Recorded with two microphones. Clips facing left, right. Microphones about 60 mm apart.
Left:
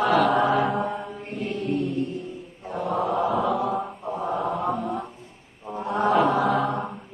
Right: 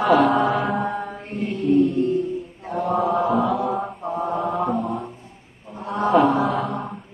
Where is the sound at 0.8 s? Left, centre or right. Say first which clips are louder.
Right 3 dB; right.